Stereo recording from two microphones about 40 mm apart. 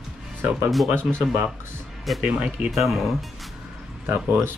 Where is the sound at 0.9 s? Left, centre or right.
Right.